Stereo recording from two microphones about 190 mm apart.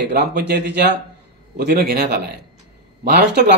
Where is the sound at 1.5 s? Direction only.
50° right (ahead or behind).